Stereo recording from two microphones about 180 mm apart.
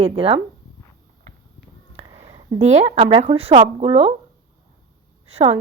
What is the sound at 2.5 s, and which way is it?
A woman's voice, 35° right (ahead or behind).